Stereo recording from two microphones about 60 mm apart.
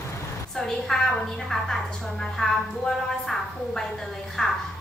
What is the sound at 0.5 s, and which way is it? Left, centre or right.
A woman's voice, centre.